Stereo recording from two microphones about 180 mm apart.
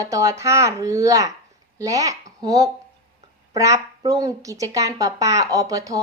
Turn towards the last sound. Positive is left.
turn(degrees=-20)  # may be behind; listen again after turning